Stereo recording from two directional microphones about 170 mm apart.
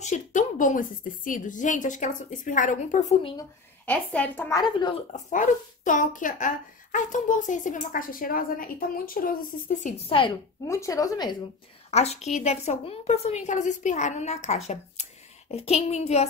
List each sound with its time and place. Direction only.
0.0 s a woman's voice: 45° left (ahead or behind)
3.8 s a woman's voice: 10° left (ahead or behind)
4.6 s a woman's voice: 25° left (ahead or behind)
5.1 s a woman's voice: 50° left (ahead or behind)
9.9 s a woman's voice: 35° left (ahead or behind)
10.7 s a woman's voice: 20° left (ahead or behind)
11.9 s a woman's voice: 40° left (ahead or behind)